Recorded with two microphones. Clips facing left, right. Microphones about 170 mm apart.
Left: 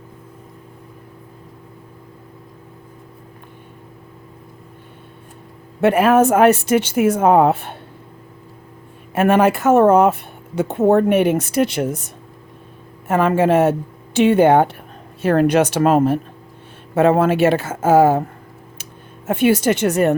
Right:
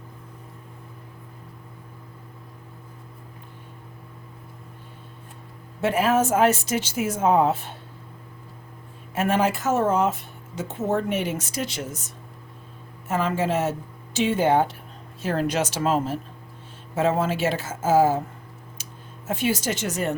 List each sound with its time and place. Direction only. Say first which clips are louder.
5.8 s speech: left 8 dB; 60° left (ahead or behind)
9.1 s speech: left 8 dB; 60° left (ahead or behind)
19.3 s speech: left 10 dB; 60° left (ahead or behind)